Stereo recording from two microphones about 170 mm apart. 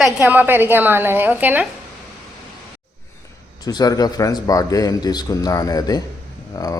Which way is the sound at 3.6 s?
20° left (ahead or behind).